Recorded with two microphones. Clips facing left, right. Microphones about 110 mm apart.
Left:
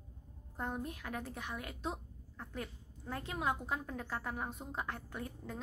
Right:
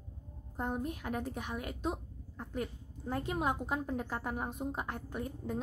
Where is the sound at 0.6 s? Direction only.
15° right (ahead or behind).